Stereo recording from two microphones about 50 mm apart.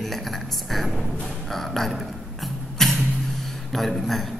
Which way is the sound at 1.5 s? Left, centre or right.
Centre.